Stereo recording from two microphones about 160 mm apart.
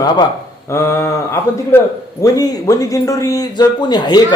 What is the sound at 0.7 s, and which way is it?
A man's voice, 20° left (ahead or behind).